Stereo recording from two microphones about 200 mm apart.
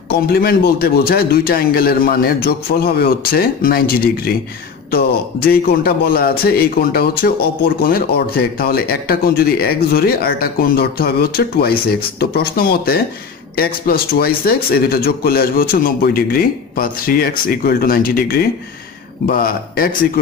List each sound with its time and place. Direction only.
0.1 s a man's voice: 50° left (ahead or behind)